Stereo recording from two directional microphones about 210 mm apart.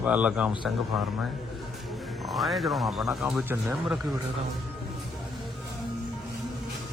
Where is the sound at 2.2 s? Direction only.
Centre (ahead or behind).